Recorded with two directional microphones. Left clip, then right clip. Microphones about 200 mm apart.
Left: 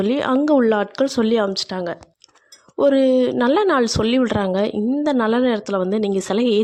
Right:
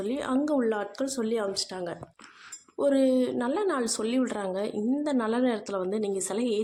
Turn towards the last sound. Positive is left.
turn(degrees=40)  # may be behind; listen again after turning